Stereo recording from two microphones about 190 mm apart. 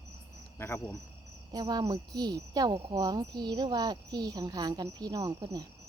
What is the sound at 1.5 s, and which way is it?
Speech, 20° right (ahead or behind).